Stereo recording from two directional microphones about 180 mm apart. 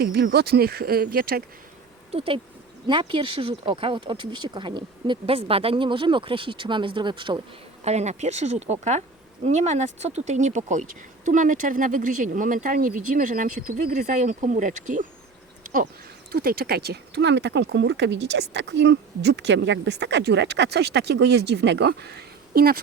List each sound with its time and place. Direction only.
0.0 s speech: 60° right (ahead or behind)
2.1 s speech: 30° right (ahead or behind)
7.9 s speech: 40° right (ahead or behind)
16.3 s speech: 55° right (ahead or behind)